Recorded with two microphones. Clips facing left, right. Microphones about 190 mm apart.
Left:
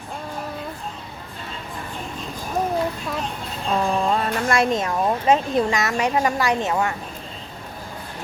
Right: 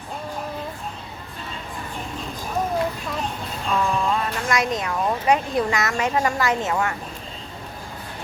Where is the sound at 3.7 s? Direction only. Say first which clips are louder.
Left 2 dB; 35° left (ahead or behind); by 6.9 s 20° left (ahead or behind).